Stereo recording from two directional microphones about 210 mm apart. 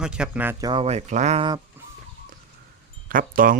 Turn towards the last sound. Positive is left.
turn(degrees=-40)  # may be behind; listen again after turning